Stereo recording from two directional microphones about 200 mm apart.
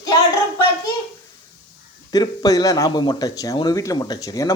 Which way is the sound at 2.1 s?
20° left (ahead or behind).